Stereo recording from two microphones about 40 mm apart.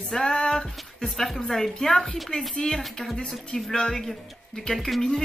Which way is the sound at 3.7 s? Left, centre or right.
Centre.